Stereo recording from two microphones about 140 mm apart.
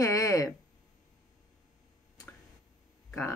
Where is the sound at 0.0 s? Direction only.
25° left (ahead or behind).